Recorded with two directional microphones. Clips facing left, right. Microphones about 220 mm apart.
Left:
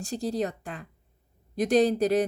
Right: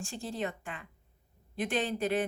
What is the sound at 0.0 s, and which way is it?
Speech, 40° left (ahead or behind).